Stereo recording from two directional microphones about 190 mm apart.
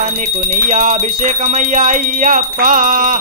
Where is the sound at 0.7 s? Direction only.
40° right (ahead or behind).